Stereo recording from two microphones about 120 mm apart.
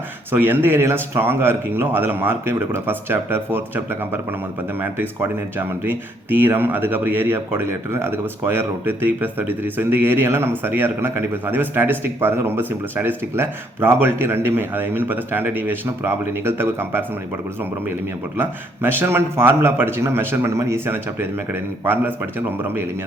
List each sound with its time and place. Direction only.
0.3 s speech: 15° right (ahead or behind)
4.8 s a man's voice: 20° right (ahead or behind)
18.3 s a man's voice: 20° right (ahead or behind)